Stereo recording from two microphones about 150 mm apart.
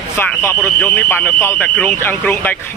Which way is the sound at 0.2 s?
15° left (ahead or behind).